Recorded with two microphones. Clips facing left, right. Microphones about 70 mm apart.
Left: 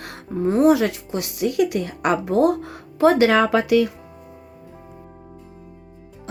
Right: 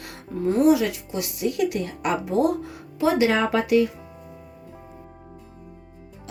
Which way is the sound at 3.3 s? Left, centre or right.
Left.